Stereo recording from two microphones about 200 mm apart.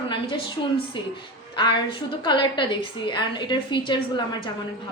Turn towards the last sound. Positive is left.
turn(degrees=25)  # may be behind; listen again after turning